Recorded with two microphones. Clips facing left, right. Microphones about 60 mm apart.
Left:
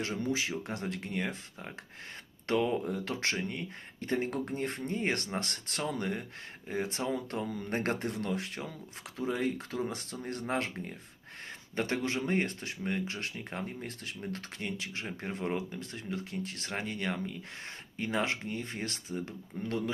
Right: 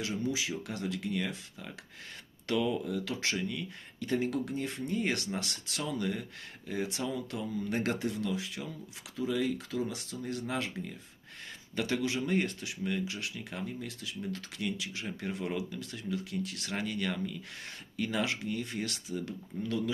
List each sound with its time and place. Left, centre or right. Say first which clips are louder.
0.0 s speech: left 1 dB; left